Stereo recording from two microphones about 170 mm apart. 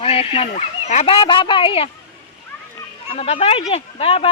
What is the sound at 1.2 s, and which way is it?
Speech, 30° left (ahead or behind).